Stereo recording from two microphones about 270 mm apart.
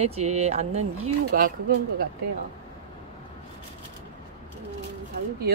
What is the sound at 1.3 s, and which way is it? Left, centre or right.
Speech, right.